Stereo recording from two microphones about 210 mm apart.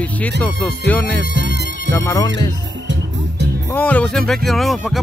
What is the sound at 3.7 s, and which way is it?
Speech, 5° left (ahead or behind).